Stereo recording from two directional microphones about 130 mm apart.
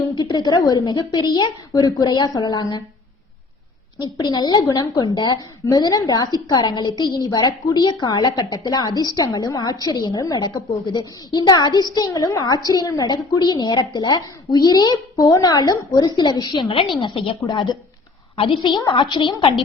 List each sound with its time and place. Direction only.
0.2 s a woman's voice: 30° left (ahead or behind)
4.0 s a woman's voice: 30° left (ahead or behind)